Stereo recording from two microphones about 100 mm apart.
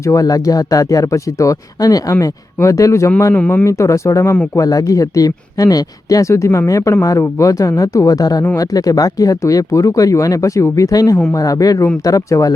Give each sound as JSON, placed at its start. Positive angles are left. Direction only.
{"t": 0.0, "sound": "speech", "side_deg": 35}
{"t": 3.3, "sound": "speech", "side_deg": 20}
{"t": 3.7, "sound": "speech", "side_deg": 30}